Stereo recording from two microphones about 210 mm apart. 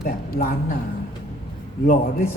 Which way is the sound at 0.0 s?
45° left (ahead or behind).